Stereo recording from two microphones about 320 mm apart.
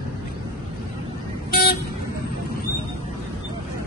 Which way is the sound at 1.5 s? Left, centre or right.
Left.